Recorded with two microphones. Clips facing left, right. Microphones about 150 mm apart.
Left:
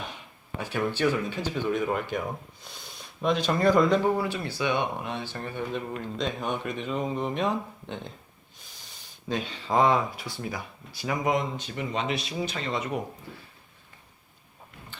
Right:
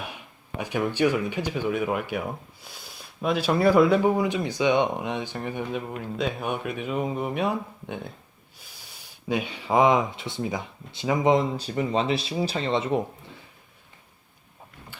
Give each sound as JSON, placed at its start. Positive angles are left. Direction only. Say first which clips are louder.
{"t": 0.6, "sound": "speech", "louder": "right 3 dB", "side_deg": -15}